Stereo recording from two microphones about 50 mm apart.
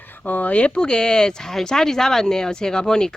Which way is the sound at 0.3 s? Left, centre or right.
Left.